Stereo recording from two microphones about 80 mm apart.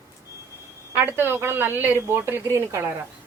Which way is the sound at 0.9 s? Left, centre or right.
Right.